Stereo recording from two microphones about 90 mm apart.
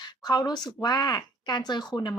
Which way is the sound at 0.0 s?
50° left (ahead or behind).